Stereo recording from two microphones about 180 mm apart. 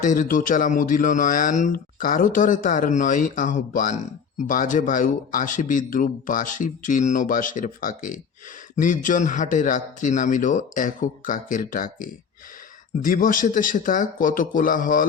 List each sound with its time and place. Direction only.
0.0 s speech: 45° left (ahead or behind)